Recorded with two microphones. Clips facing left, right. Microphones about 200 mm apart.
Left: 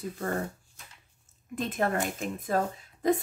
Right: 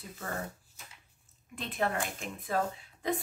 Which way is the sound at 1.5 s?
45° left (ahead or behind).